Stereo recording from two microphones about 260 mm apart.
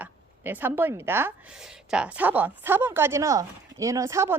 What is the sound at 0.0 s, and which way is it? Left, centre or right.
A woman's voice, centre.